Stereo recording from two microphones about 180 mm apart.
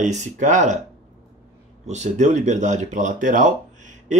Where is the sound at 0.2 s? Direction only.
40° right (ahead or behind).